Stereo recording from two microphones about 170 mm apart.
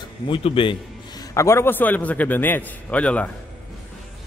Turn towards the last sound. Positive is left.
turn(degrees=10)  # may be behind; listen again after turning